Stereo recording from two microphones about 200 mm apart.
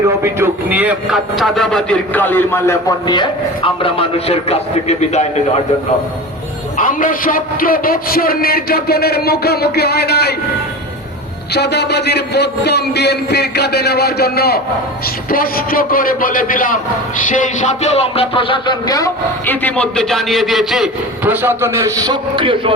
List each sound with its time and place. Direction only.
0.2 s a man's voice: 10° right (ahead or behind); by 5.4 s 35° left (ahead or behind)
6.7 s a man's voice: 40° left (ahead or behind)
11.5 s a man's voice: 55° left (ahead or behind); by 21.9 s 10° right (ahead or behind)
22.0 s a man's voice: 25° right (ahead or behind)